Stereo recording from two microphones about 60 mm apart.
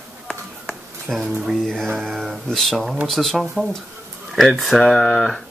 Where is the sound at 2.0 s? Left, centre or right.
Centre.